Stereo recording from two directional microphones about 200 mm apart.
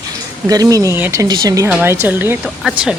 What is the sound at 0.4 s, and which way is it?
Speech, 15° right (ahead or behind).